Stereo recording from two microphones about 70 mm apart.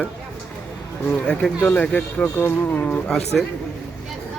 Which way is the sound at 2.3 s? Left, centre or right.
Left.